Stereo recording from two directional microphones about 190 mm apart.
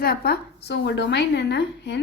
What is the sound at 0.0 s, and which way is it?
A woman's voice, 55° left (ahead or behind).